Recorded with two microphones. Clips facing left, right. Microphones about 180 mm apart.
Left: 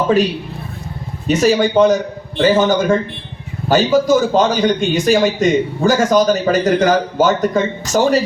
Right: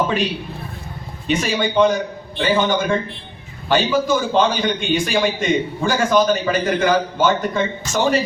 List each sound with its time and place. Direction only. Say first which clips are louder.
1.3 s a man's voice: left 7 dB; 40° left (ahead or behind)